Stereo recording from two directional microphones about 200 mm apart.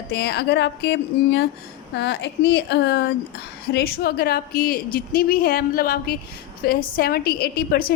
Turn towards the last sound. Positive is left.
turn(degrees=50)  # may be behind; listen again after turning